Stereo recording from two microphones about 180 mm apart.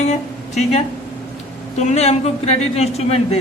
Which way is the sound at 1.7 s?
40° left (ahead or behind).